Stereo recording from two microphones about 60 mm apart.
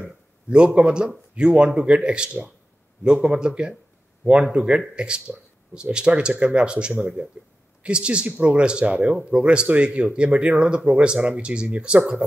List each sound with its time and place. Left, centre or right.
0.5 s speech: centre